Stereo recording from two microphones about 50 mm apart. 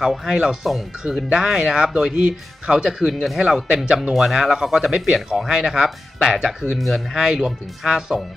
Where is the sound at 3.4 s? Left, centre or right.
Centre.